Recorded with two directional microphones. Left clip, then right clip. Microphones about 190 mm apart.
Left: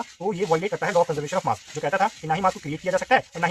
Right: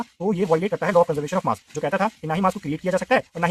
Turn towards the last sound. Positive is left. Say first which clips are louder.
# even
turn(degrees=-45)  # may be behind; listen again after turning